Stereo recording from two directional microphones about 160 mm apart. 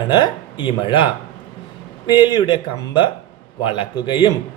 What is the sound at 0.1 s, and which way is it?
A man's voice, 30° left (ahead or behind).